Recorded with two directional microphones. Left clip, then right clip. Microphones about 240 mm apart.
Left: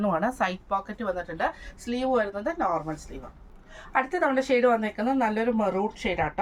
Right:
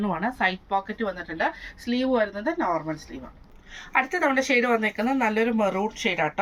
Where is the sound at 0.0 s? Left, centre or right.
Centre.